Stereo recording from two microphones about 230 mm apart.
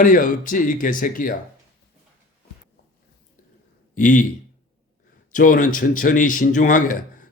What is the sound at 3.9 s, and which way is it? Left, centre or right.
Speech, left.